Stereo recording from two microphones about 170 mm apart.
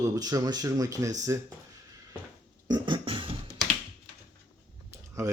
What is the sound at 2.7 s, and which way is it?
Beatboxing, 25° right (ahead or behind).